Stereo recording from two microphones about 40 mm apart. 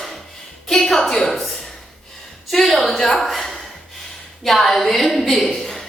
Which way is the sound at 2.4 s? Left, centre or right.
Centre.